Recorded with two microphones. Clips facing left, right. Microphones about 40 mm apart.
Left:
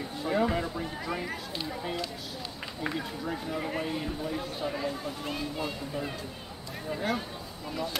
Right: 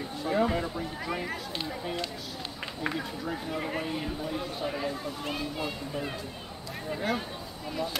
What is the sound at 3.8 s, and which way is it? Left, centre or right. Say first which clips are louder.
Speech: even; centre.